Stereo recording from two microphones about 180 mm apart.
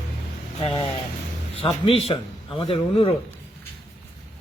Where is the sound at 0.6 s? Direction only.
30° left (ahead or behind).